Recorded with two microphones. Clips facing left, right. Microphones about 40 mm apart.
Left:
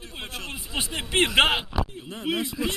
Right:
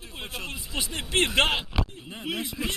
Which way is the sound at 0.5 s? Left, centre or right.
Left.